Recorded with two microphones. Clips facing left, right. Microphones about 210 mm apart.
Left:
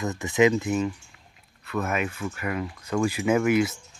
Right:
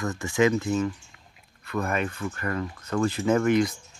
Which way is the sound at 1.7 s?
5° left (ahead or behind).